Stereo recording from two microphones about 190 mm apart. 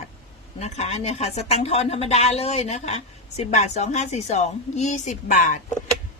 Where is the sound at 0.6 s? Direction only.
35° left (ahead or behind).